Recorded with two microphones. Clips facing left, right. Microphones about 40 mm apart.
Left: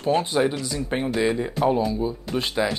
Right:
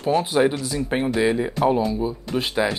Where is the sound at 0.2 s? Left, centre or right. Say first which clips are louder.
Right 3 dB; centre.